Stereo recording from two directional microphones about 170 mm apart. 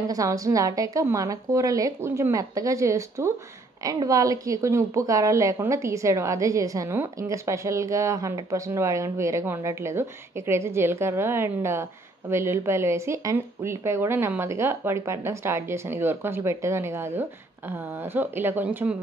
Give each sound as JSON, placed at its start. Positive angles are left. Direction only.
{"t": 0.1, "sound": "a woman's voice", "side_deg": -20}